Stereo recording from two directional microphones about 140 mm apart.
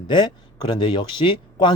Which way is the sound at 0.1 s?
35° left (ahead or behind).